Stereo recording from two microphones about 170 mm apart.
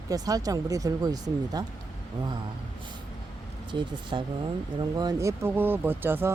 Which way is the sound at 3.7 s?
30° right (ahead or behind).